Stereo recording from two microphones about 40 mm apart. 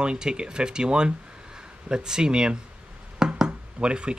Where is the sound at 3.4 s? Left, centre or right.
Right.